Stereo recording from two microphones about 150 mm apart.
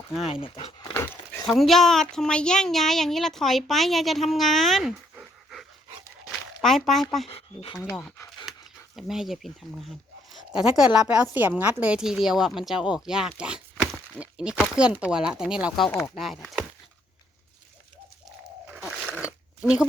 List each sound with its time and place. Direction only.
0.1 s speech: centre (ahead or behind)
0.3 s speech: 35° left (ahead or behind)
0.9 s a sound: 15° left (ahead or behind)
1.5 s speech: centre (ahead or behind)
7.3 s speech: 40° left (ahead or behind)
8.5 s a sound: centre (ahead or behind)
9.0 s a woman's voice: centre (ahead or behind)
15.9 s speech: 15° left (ahead or behind)
16.1 s speech: centre (ahead or behind)
18.7 s crunch: 10° right (ahead or behind)
19.2 s a sound: 5° right (ahead or behind)